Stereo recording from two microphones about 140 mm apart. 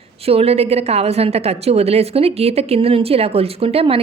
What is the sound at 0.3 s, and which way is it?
A woman's voice, 45° right (ahead or behind).